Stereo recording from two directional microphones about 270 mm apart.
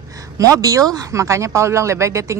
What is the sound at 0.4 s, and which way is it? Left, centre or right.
Speech, centre.